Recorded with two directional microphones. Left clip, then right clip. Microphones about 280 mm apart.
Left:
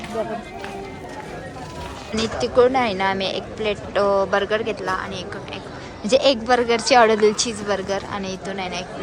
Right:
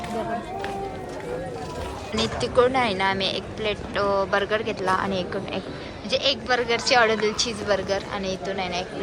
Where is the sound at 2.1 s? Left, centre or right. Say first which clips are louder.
Left 3 dB; centre.